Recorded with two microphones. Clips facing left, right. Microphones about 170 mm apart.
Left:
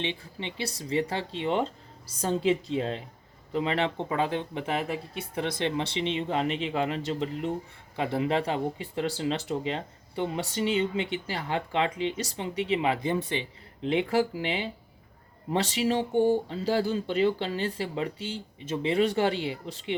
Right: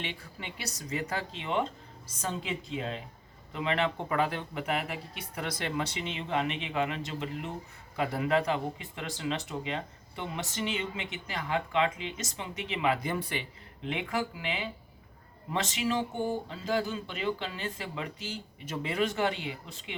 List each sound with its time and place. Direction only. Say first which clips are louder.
0.0 s speech: left 6 dB; 25° left (ahead or behind)